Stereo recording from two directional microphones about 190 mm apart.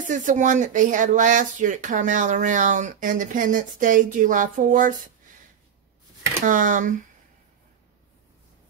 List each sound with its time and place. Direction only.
0.0 s speech: 40° right (ahead or behind)
6.4 s speech: 40° right (ahead or behind)